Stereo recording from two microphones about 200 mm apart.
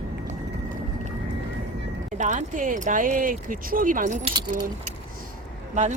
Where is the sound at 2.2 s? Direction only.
40° right (ahead or behind).